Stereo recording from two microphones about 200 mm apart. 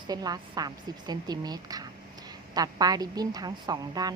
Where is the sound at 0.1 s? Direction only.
20° right (ahead or behind).